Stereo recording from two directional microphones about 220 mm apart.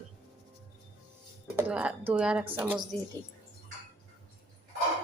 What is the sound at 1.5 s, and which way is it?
A woman's voice, 5° right (ahead or behind).